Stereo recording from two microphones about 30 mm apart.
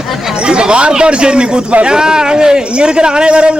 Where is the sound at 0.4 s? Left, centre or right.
Right.